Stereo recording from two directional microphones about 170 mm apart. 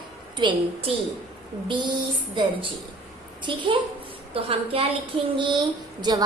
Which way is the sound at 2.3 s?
30° right (ahead or behind).